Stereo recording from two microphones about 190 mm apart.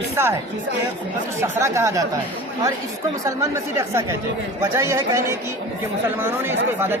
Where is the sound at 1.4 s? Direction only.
15° right (ahead or behind).